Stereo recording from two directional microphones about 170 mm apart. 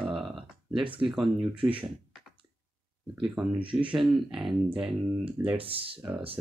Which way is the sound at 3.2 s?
5° right (ahead or behind).